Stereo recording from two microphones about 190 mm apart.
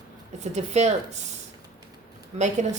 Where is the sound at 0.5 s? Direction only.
35° right (ahead or behind).